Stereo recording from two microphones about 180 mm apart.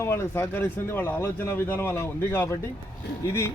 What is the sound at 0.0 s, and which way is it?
A man's voice, 15° left (ahead or behind).